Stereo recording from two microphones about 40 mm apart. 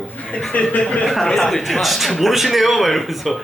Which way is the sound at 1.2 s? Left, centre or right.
Centre.